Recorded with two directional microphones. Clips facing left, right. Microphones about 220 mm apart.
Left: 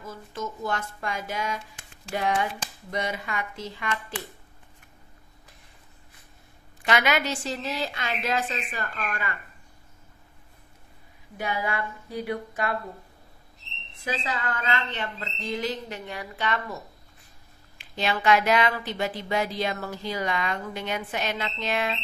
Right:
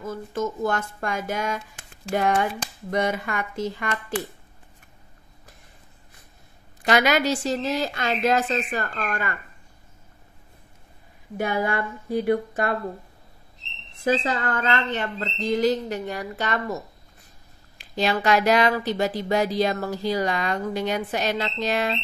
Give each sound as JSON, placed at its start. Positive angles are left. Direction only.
{"t": 0.0, "sound": "speech", "side_deg": -50}
{"t": 6.8, "sound": "speech", "side_deg": -40}
{"t": 11.3, "sound": "speech", "side_deg": -50}
{"t": 14.0, "sound": "speech", "side_deg": -45}
{"t": 17.7, "sound": "speech", "side_deg": -40}